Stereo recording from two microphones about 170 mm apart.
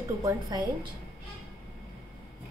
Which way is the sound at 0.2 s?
20° right (ahead or behind).